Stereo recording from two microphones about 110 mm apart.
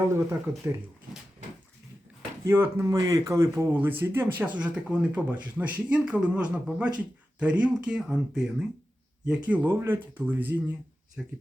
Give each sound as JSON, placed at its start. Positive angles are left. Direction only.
{"t": 0.1, "sound": "speech", "side_deg": -25}
{"t": 2.4, "sound": "speech", "side_deg": -25}
{"t": 9.5, "sound": "speech", "side_deg": -15}
{"t": 11.2, "sound": "speech", "side_deg": -5}